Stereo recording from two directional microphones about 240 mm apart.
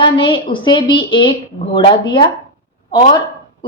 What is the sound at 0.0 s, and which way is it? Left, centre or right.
A woman's voice, centre.